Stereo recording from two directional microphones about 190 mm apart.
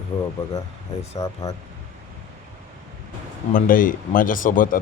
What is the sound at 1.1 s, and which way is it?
Speech, 15° left (ahead or behind).